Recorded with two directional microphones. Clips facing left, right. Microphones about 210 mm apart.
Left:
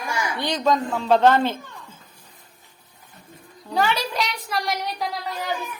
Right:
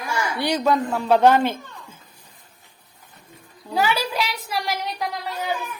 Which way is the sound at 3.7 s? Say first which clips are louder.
Right 1 dB; 5° right (ahead or behind).